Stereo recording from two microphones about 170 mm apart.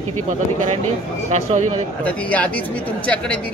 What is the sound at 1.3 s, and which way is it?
Speech, 40° right (ahead or behind).